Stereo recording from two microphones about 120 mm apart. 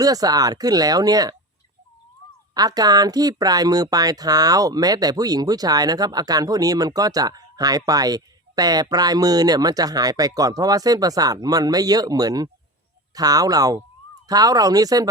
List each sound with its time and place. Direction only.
0.0 s speech: 30° right (ahead or behind)
2.6 s speech: 30° right (ahead or behind)